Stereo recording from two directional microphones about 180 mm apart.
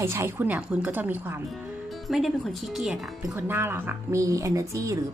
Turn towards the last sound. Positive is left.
turn(degrees=-20)  # may be behind; listen again after turning